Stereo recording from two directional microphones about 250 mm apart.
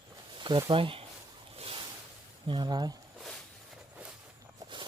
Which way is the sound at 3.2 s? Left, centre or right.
Centre.